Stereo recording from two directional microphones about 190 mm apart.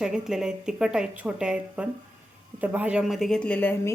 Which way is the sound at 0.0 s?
5° right (ahead or behind).